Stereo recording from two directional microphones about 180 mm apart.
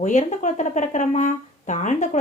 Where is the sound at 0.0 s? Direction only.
40° left (ahead or behind).